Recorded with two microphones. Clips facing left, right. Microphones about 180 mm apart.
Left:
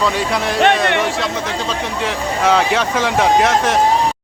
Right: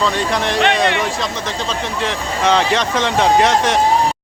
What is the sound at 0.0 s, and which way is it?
Speech, 5° left (ahead or behind).